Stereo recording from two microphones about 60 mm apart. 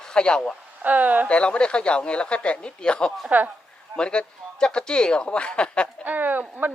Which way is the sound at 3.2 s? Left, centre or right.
Right.